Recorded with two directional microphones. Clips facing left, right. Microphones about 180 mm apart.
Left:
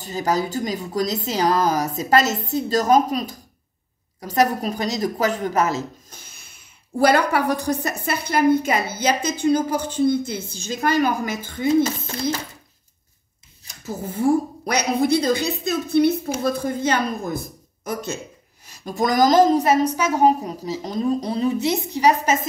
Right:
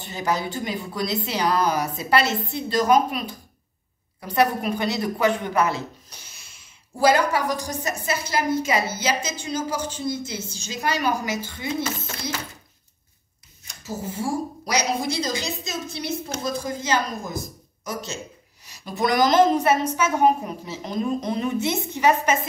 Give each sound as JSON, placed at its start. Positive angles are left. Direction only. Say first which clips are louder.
{"t": 0.0, "sound": "a woman's voice", "louder": "left 3 dB", "side_deg": 40}
{"t": 11.8, "sound": "a woman's voice", "louder": "left 7 dB", "side_deg": 30}
{"t": 13.8, "sound": "a woman's voice", "louder": "left 7 dB", "side_deg": 55}
{"t": 18.7, "sound": "a woman's voice", "louder": "left 2 dB", "side_deg": 45}